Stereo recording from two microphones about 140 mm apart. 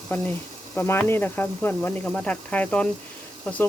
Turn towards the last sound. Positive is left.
turn(degrees=10)  # may be behind; listen again after turning